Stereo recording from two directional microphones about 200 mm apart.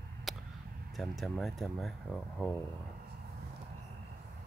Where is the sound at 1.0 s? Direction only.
Centre (ahead or behind).